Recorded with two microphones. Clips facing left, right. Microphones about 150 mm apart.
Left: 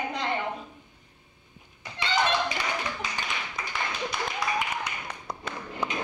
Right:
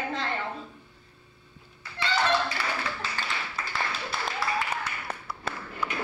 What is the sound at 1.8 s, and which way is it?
Clapping, 15° left (ahead or behind).